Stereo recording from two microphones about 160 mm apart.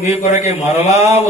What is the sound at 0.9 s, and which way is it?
Speech, 20° right (ahead or behind).